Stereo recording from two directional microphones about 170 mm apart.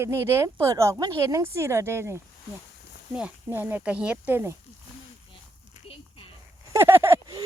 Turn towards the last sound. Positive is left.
turn(degrees=-20)  # may be behind; listen again after turning